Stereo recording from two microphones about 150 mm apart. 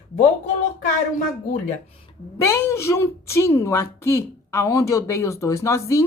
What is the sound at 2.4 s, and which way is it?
A woman's voice, 20° left (ahead or behind).